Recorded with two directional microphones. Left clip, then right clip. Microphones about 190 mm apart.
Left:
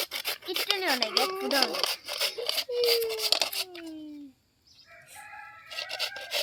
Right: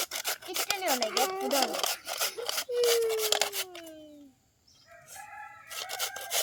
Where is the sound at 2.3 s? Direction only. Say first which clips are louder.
Left 3 dB; centre (ahead or behind).